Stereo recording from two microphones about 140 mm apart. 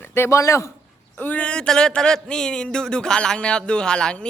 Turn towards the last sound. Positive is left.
turn(degrees=5)  # may be behind; listen again after turning